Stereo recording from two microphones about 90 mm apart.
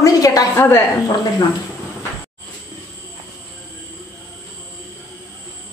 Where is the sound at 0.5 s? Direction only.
25° left (ahead or behind).